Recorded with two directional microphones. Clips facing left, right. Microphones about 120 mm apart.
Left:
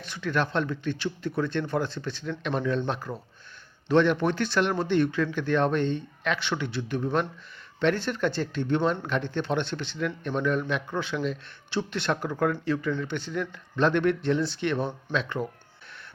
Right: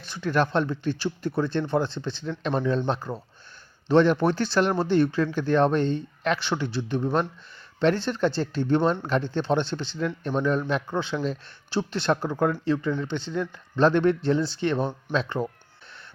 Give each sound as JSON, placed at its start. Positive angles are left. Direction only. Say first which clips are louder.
{"t": 0.0, "sound": "speech", "louder": "right 3 dB", "side_deg": -35}